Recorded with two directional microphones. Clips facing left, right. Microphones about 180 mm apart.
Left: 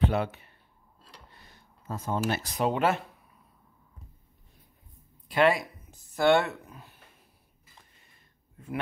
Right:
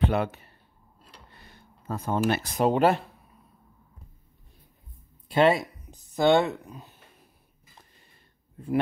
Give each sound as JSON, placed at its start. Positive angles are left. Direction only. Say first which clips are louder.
{"t": 0.0, "sound": "speech", "louder": "right 2 dB", "side_deg": -60}
{"t": 0.3, "sound": "speech", "louder": "right 1 dB", "side_deg": -40}
{"t": 1.3, "sound": "a sound", "louder": "right 3 dB", "side_deg": -60}
{"t": 2.7, "sound": "speech", "louder": "right 5 dB", "side_deg": -35}
{"t": 5.3, "sound": "speech", "louder": "right 3 dB", "side_deg": -25}